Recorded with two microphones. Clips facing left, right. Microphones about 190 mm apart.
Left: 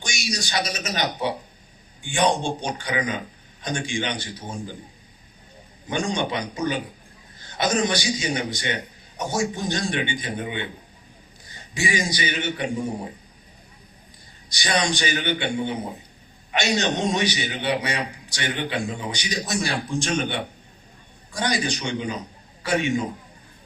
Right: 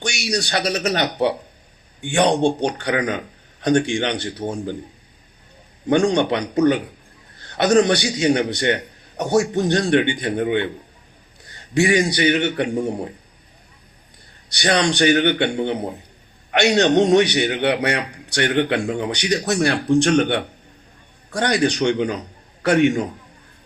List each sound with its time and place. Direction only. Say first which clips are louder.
0.0 s a man's voice: right 7 dB; 65° right (ahead or behind)
5.9 s a man's voice: right 9 dB; 65° right (ahead or behind)
14.5 s a man's voice: right 5 dB; 65° right (ahead or behind)